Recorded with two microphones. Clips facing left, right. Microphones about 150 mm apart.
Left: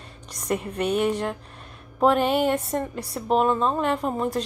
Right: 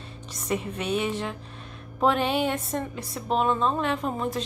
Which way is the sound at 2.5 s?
10° left (ahead or behind).